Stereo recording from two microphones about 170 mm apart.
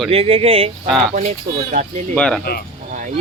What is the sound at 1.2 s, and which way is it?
Speech, 45° right (ahead or behind).